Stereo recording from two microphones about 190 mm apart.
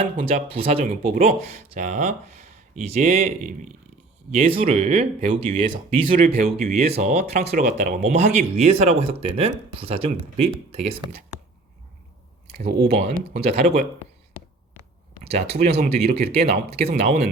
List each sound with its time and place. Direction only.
0.2 s speech: 35° right (ahead or behind)
0.9 s speech: 40° right (ahead or behind)
12.5 s speech: 60° right (ahead or behind)
12.9 s speech: 35° right (ahead or behind)
15.4 s speech: 55° right (ahead or behind)
16.8 s speech: 40° right (ahead or behind)